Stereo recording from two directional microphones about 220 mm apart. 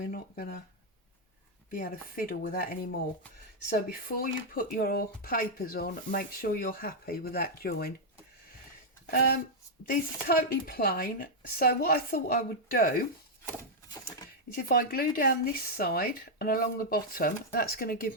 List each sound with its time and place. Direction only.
0.0 s a sound: 40° left (ahead or behind)
1.7 s speech: 40° left (ahead or behind)
9.0 s speech: 45° left (ahead or behind)
14.5 s speech: 40° left (ahead or behind)